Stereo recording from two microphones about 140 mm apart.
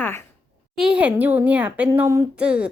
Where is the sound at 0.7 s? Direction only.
5° right (ahead or behind).